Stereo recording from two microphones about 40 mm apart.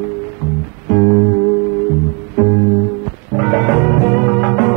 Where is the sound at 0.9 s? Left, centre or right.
Centre.